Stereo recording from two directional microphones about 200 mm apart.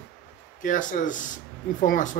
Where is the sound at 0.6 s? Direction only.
40° left (ahead or behind).